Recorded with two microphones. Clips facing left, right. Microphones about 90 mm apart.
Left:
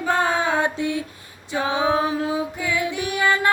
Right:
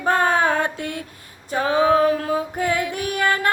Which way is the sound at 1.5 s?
45° right (ahead or behind).